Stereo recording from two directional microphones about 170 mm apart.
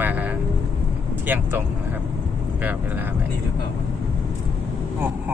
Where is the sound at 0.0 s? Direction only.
10° right (ahead or behind).